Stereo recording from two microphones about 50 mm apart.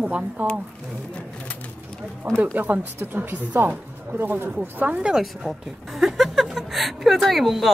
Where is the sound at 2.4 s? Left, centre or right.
Right.